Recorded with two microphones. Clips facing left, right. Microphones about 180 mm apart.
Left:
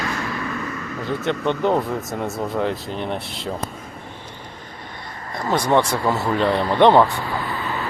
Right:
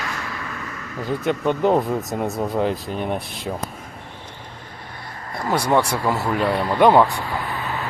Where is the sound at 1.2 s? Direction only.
10° right (ahead or behind).